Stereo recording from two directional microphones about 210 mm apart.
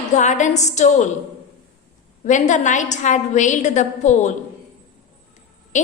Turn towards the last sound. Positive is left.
turn(degrees=35)  # may be behind; listen again after turning